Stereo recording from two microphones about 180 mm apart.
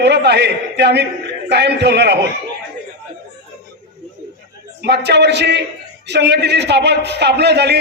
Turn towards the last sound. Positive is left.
turn(degrees=-70)  # may be behind; listen again after turning